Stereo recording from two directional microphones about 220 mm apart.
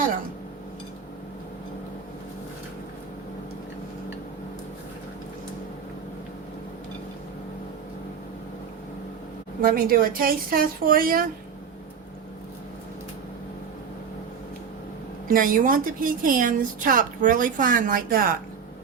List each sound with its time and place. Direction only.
9.6 s a woman's voice: 40° right (ahead or behind)
15.3 s a woman's voice: 40° right (ahead or behind)